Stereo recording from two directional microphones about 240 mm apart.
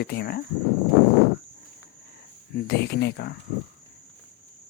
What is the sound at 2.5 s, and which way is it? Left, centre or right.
Speech, left.